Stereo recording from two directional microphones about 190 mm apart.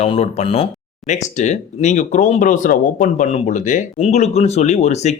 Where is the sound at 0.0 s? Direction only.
35° left (ahead or behind).